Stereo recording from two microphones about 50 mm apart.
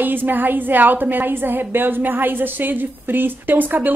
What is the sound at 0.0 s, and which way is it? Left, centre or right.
A woman's voice, right.